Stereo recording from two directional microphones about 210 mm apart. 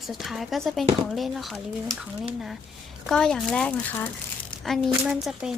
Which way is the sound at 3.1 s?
5° left (ahead or behind).